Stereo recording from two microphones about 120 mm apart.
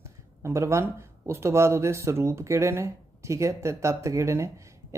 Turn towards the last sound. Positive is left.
turn(degrees=-25)  # may be behind; listen again after turning